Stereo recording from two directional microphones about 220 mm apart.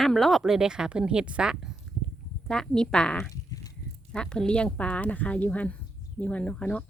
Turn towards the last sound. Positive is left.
turn(degrees=5)  # may be behind; listen again after turning